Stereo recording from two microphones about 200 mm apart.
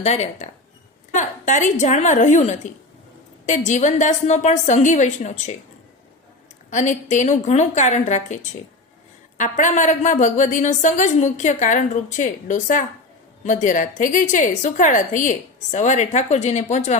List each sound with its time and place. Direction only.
0.0 s a woman's voice: 35° left (ahead or behind)
6.7 s a woman's voice: 35° left (ahead or behind)